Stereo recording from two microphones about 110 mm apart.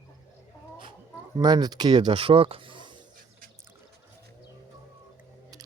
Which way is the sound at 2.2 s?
55° right (ahead or behind).